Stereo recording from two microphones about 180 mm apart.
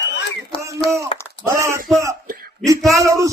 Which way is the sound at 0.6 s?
15° right (ahead or behind).